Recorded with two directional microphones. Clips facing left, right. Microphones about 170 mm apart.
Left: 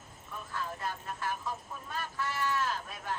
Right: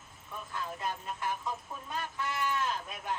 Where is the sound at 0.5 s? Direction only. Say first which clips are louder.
Right 1 dB; 20° right (ahead or behind).